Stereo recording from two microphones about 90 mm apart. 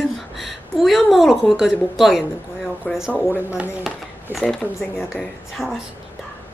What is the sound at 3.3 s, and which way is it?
Speech, 15° right (ahead or behind).